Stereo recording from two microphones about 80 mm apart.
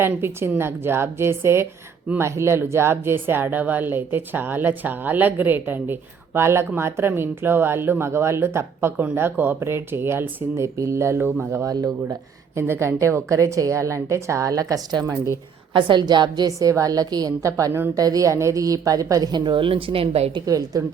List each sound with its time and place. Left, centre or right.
0.0 s a woman's voice: right
11.6 s a woman's voice: right
12.5 s a woman's voice: right
15.7 s a woman's voice: right
19.3 s speech: right
20.4 s a woman's voice: right